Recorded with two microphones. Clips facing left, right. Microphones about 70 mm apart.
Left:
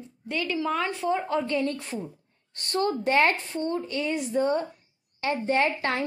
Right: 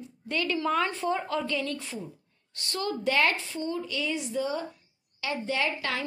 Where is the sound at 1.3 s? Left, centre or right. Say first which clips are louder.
Left 4 dB; left.